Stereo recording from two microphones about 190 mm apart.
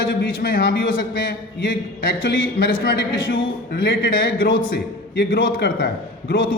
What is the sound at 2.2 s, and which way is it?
Speech, 80° left.